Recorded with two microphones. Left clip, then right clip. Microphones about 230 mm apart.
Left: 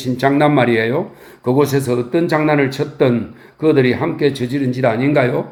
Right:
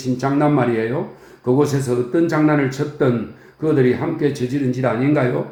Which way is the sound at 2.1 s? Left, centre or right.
Left.